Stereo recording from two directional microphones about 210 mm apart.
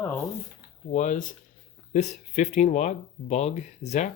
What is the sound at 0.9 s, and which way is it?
Speech, 35° left (ahead or behind).